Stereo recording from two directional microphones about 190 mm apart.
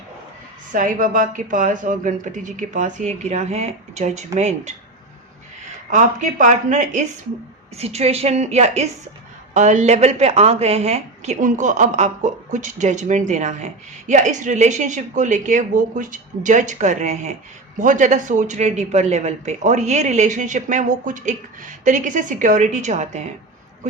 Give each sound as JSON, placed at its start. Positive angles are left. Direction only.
{"t": 0.7, "sound": "speech", "side_deg": -45}
{"t": 5.9, "sound": "speech", "side_deg": -40}